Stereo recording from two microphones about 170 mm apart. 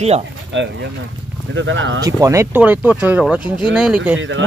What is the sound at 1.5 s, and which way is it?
Speech, 90° right.